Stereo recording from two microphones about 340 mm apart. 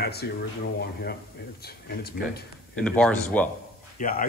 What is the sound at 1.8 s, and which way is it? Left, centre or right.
Speech, left.